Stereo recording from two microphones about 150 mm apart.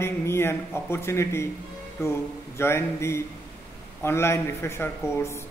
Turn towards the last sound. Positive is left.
turn(degrees=20)  # may be behind; listen again after turning